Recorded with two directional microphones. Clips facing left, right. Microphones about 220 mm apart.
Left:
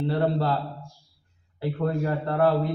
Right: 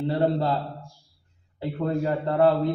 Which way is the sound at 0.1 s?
20° right (ahead or behind).